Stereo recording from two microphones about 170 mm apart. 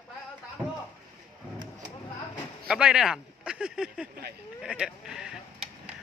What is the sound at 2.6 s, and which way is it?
Speech, 5° right (ahead or behind).